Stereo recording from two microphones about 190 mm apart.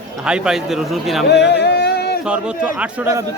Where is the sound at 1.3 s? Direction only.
65° left (ahead or behind).